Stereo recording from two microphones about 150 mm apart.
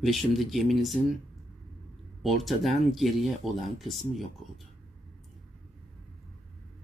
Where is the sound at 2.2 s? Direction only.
Centre (ahead or behind).